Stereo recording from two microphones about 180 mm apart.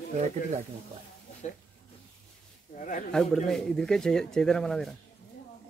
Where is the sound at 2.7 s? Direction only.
45° left (ahead or behind).